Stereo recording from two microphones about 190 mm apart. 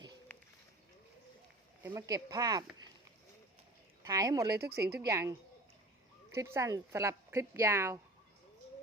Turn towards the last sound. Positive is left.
turn(degrees=-15)  # may be behind; listen again after turning